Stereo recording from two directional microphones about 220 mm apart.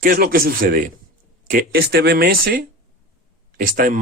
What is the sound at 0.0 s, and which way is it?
Speech, 40° right (ahead or behind).